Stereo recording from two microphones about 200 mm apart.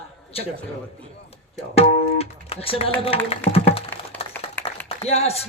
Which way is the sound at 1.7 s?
30° left (ahead or behind).